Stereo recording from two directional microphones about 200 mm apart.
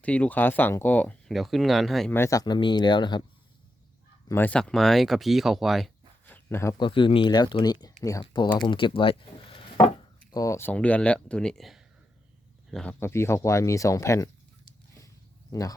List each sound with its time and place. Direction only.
0.0 s speech: 5° left (ahead or behind)
2.1 s speech: 15° left (ahead or behind)
4.3 s speech: 10° left (ahead or behind); by 9.6 s 25° left (ahead or behind)
10.3 s speech: 15° left (ahead or behind)
15.0 s wild animals: 15° left (ahead or behind)